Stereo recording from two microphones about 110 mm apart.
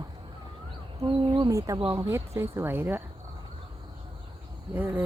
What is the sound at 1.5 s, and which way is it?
Speech, 30° right (ahead or behind).